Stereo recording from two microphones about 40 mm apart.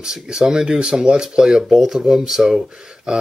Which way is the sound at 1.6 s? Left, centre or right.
Centre.